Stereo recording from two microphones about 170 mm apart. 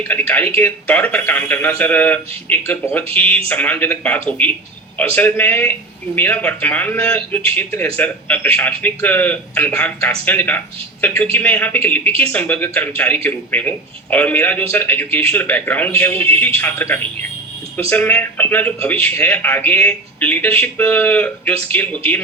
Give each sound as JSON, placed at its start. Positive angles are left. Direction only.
{"t": 0.1, "sound": "a man's voice", "side_deg": 10}